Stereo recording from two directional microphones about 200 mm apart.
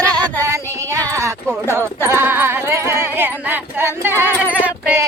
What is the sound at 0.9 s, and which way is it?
Speech, 15° right (ahead or behind).